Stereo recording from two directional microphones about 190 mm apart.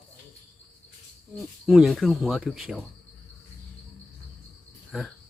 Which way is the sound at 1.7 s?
Centre (ahead or behind).